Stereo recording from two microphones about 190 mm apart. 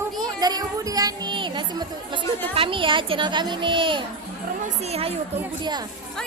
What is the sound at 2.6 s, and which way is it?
A child's voice, 25° right (ahead or behind).